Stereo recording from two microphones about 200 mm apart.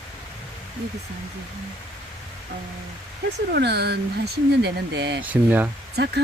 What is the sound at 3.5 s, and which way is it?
Speech, 55° right (ahead or behind).